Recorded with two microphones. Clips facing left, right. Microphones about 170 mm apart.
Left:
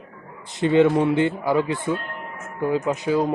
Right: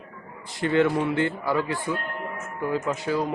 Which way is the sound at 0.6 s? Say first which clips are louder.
Left 5 dB; 20° left (ahead or behind).